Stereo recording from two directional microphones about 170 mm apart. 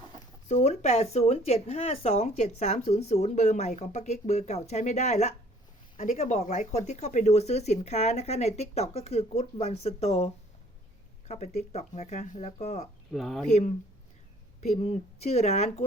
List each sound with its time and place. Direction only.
0.4 s speech: 45° left (ahead or behind)
13.1 s speech: centre (ahead or behind)
13.5 s speech: 40° left (ahead or behind)